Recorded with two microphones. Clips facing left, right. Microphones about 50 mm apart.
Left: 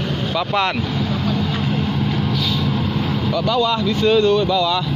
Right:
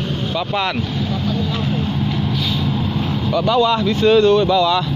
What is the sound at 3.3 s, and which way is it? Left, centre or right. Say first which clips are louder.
Speech: right 4 dB; right.